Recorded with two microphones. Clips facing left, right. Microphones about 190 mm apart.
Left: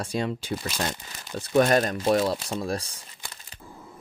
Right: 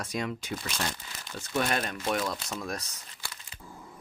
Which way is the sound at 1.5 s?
45° left (ahead or behind).